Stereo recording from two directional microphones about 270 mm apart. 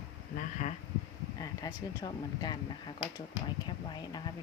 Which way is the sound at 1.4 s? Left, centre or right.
Centre.